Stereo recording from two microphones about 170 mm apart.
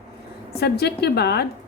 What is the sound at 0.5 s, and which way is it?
Speech, 70° left (ahead or behind).